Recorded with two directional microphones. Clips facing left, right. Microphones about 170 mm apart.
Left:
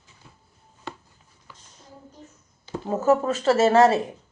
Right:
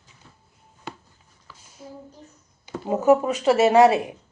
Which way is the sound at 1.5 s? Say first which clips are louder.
Right 9 dB; 10° right (ahead or behind).